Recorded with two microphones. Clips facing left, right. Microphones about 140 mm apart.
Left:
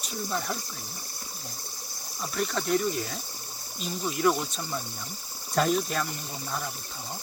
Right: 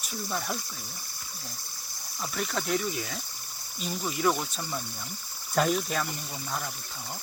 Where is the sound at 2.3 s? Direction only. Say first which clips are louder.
Left 3 dB; centre (ahead or behind).